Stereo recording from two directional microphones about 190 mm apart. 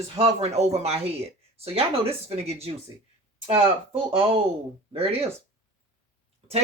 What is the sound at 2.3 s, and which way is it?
Speech, 35° right (ahead or behind).